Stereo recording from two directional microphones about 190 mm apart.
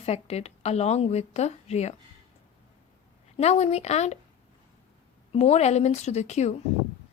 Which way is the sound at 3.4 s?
35° left (ahead or behind).